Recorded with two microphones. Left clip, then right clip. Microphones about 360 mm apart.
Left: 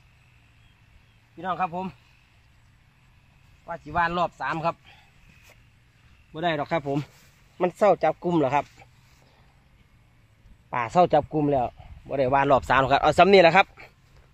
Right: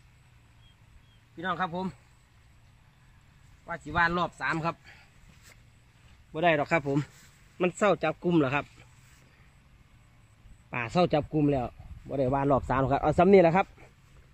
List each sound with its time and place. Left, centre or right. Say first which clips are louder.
1.4 s a man's voice: left 3 dB; centre
3.6 s a man's voice: left 2 dB; centre
6.3 s a man's voice: right 1 dB; centre
7.5 s speech: left 5 dB; centre
10.7 s a man's voice: left 7 dB; centre